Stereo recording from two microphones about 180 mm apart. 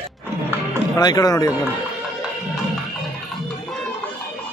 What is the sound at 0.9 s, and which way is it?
Speech, 20° left (ahead or behind).